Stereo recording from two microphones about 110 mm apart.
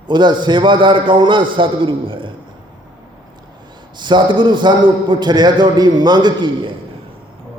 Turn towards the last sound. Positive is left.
turn(degrees=-40)  # may be behind; listen again after turning